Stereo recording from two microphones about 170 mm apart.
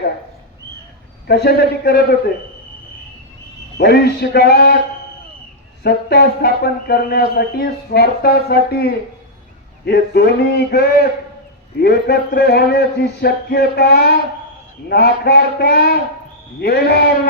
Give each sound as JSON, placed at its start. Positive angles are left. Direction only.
{"t": 1.3, "sound": "speech", "side_deg": 75}
{"t": 3.8, "sound": "speech", "side_deg": 70}
{"t": 5.8, "sound": "speech", "side_deg": 70}